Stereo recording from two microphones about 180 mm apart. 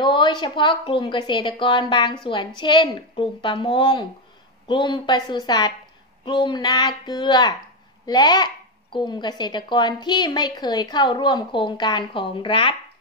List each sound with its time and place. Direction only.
0.0 s a woman's voice: 25° left (ahead or behind)